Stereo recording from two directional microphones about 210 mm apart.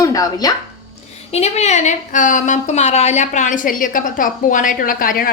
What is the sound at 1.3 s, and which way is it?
A woman's voice, 30° left (ahead or behind).